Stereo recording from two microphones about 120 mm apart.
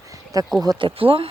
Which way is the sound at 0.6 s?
45° right (ahead or behind).